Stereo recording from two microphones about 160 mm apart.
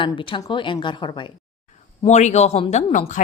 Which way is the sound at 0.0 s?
30° left (ahead or behind).